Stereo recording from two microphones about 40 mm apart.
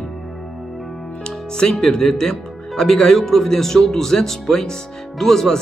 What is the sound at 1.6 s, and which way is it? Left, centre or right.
Speech, centre.